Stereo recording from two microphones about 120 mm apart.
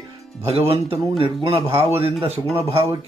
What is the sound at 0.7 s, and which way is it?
Speech, 50° right (ahead or behind).